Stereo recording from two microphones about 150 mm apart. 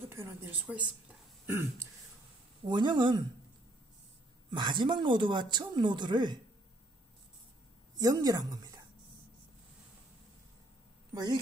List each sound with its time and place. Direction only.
0.1 s a woman's voice: 15° right (ahead or behind)
0.7 s a sound: 5° right (ahead or behind)
2.6 s speech: 30° right (ahead or behind)
4.5 s speech: 30° right (ahead or behind)
7.9 s a woman's voice: 25° right (ahead or behind)